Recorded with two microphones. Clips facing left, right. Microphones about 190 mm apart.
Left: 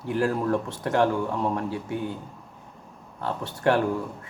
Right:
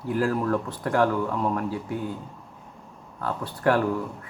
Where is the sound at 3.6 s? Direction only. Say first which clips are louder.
Even; 25° left (ahead or behind).